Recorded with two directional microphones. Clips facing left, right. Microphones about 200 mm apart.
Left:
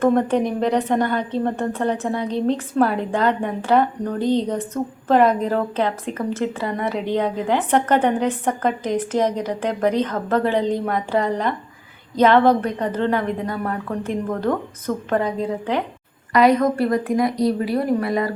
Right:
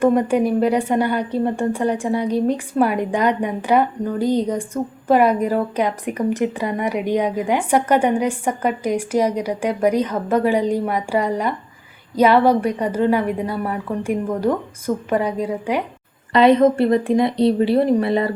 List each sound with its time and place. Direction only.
0.0 s a woman's voice: 10° right (ahead or behind)
16.3 s a woman's voice: 25° right (ahead or behind)